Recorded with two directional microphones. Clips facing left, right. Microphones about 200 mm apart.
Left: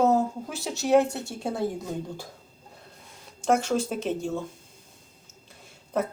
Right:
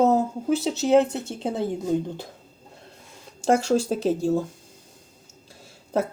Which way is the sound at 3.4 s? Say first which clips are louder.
Right 3 dB; 30° right (ahead or behind).